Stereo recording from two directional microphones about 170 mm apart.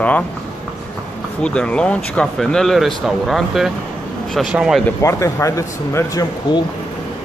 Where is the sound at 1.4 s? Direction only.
5° left (ahead or behind).